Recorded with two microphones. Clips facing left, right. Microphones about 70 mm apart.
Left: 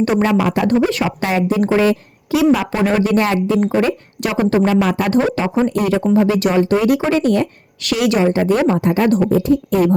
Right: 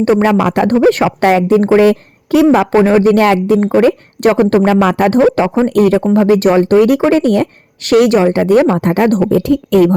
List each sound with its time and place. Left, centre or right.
0.2 s a woman's voice: right
1.8 s a woman's voice: right
2.7 s speech: right
3.6 s speech: right
4.4 s a woman's voice: right
9.2 s speech: right